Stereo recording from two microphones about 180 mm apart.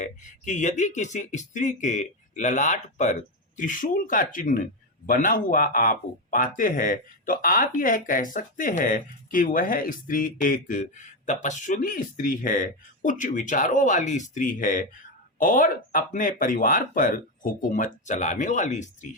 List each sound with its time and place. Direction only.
0.0 s speech: 45° left (ahead or behind)